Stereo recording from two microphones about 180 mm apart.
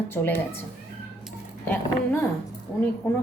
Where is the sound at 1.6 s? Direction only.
10° left (ahead or behind).